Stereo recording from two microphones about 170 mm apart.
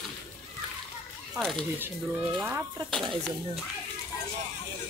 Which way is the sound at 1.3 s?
Centre (ahead or behind).